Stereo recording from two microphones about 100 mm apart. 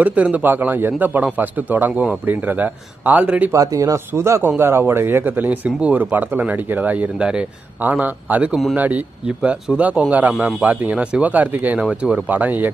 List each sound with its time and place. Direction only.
0.0 s speech: 15° right (ahead or behind)
3.5 s speech: 35° right (ahead or behind)
4.1 s speech: 25° right (ahead or behind)